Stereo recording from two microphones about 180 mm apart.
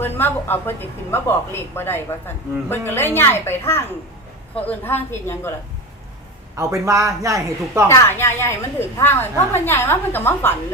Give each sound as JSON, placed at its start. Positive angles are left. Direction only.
{"t": 0.0, "sound": "speech", "side_deg": 10}
{"t": 6.6, "sound": "speech", "side_deg": -15}
{"t": 7.9, "sound": "speech", "side_deg": 15}